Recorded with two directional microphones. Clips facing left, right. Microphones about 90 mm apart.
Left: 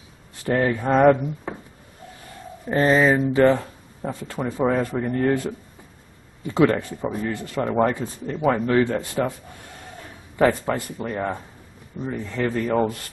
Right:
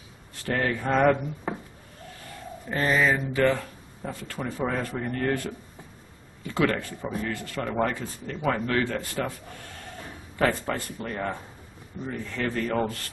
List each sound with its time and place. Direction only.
0.4 s speech: 15° left (ahead or behind)
1.5 s wood: 5° right (ahead or behind)
2.7 s speech: 30° left (ahead or behind)
10.3 s a man's voice: 15° left (ahead or behind)